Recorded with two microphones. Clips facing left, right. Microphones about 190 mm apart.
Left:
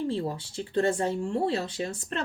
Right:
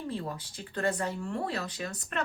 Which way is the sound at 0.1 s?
30° left (ahead or behind).